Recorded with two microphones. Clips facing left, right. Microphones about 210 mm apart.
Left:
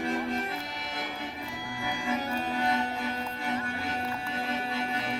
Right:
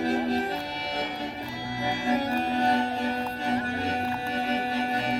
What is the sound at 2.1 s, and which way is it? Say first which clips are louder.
Music: right 5 dB; 35° right (ahead or behind).